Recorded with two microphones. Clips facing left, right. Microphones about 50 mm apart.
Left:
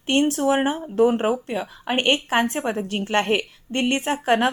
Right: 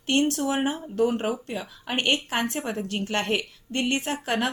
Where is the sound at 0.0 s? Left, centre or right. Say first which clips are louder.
Left 4 dB; left.